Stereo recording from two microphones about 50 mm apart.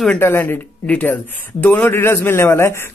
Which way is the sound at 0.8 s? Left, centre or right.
Left.